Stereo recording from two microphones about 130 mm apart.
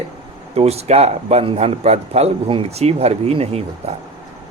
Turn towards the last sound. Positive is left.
turn(degrees=-50)  # may be behind; listen again after turning